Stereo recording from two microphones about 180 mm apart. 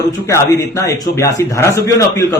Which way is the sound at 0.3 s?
15° left (ahead or behind).